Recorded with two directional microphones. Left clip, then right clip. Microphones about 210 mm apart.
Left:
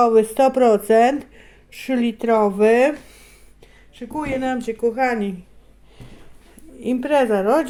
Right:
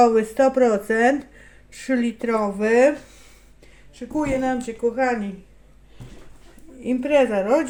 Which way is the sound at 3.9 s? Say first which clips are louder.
Right 1 dB; 30° left (ahead or behind).